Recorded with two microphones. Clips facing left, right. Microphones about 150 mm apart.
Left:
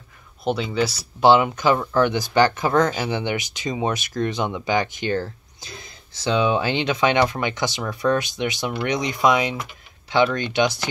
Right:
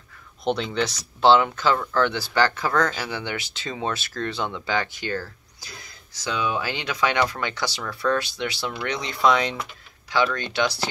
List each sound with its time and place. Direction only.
0.4 s speech: 5° left (ahead or behind)
10.0 s speech: 20° left (ahead or behind)